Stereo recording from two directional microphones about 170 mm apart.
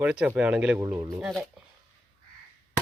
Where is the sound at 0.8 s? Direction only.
20° right (ahead or behind).